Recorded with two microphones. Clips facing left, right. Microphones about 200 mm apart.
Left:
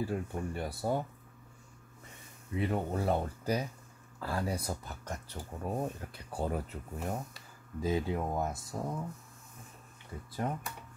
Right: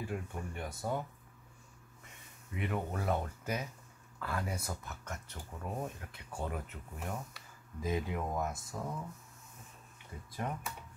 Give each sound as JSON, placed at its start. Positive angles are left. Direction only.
{"t": 0.0, "sound": "speech", "side_deg": 35}
{"t": 2.5, "sound": "speech", "side_deg": 30}
{"t": 10.4, "sound": "speech", "side_deg": 30}